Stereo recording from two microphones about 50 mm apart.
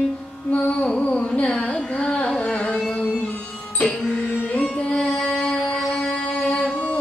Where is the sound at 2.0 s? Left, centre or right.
Left.